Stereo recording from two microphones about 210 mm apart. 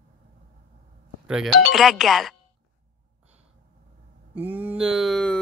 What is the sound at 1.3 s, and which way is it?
Speech, centre (ahead or behind).